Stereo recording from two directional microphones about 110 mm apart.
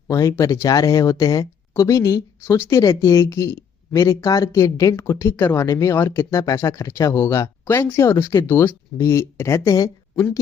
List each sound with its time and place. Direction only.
0.1 s speech: 25° left (ahead or behind)